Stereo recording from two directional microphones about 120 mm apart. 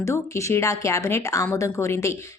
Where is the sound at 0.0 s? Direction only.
25° left (ahead or behind).